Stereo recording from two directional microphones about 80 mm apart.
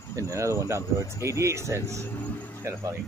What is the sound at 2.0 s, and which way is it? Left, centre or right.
Speech, left.